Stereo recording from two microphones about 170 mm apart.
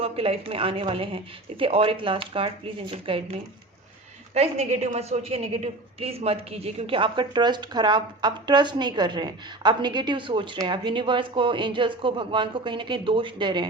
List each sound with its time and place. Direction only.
0.0 s speech: 35° right (ahead or behind)
4.4 s a woman's voice: 40° right (ahead or behind)